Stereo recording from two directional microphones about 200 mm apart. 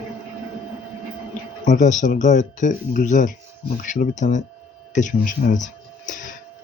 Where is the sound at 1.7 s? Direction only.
40° left (ahead or behind).